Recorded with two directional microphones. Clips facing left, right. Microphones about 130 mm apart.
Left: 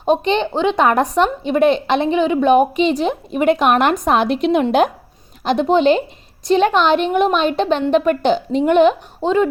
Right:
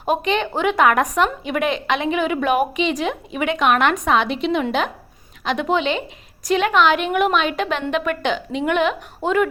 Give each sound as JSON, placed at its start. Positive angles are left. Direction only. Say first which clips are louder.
{"t": 0.1, "sound": "a woman's voice", "louder": "left 4 dB", "side_deg": 30}